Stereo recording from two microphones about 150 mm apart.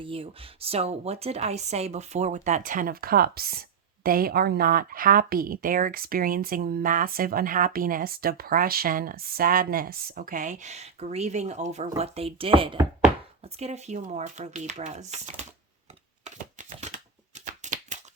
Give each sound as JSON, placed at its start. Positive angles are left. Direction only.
{"t": 0.0, "sound": "speech", "side_deg": -40}
{"t": 13.4, "sound": "speech", "side_deg": -45}
{"t": 16.2, "sound": "a sound", "side_deg": -55}